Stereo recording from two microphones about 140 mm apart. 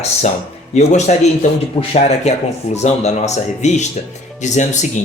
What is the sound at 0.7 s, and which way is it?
Speech, 55° left (ahead or behind).